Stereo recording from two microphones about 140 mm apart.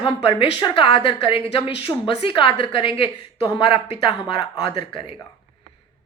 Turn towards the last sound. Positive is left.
turn(degrees=40)  # may be behind; listen again after turning